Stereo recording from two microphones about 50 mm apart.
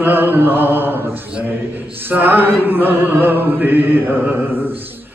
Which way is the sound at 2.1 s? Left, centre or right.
Right.